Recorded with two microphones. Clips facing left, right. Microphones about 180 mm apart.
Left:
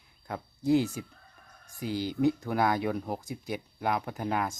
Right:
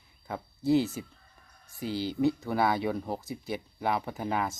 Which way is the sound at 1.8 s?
50° left (ahead or behind).